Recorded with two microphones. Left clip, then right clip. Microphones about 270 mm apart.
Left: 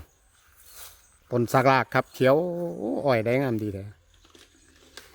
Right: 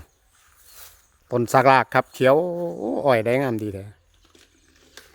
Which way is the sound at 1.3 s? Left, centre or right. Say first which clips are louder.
Right 5 dB; right.